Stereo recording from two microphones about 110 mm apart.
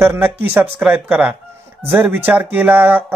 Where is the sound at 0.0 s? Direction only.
20° right (ahead or behind).